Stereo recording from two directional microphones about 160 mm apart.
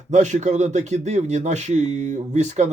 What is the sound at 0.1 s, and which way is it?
A man's voice, 50° right (ahead or behind).